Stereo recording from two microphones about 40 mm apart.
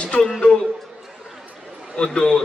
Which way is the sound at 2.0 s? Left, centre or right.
Left.